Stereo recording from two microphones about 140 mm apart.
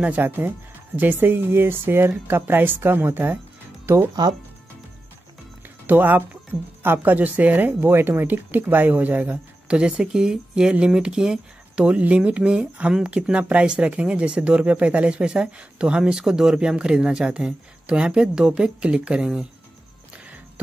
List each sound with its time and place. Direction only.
0.0 s speech: 10° right (ahead or behind)
4.1 s speech: 30° right (ahead or behind)
5.9 s speech: 10° right (ahead or behind)